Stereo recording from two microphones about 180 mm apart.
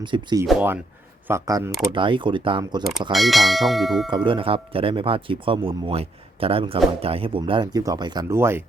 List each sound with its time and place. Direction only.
0.0 s speech: 25° right (ahead or behind)
1.9 s speech: 30° right (ahead or behind)
3.1 s bell: centre (ahead or behind)
4.1 s speech: 25° right (ahead or behind)